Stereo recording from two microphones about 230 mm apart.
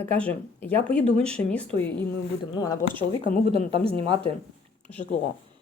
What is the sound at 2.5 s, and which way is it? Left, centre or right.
Speech, centre.